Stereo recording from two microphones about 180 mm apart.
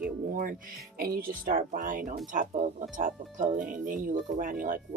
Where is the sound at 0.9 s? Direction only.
55° right (ahead or behind).